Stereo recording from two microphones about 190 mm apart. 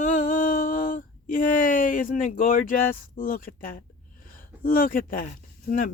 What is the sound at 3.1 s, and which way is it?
Speech, 45° left (ahead or behind).